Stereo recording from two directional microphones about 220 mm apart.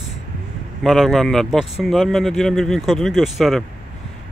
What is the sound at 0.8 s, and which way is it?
Speech, centre (ahead or behind).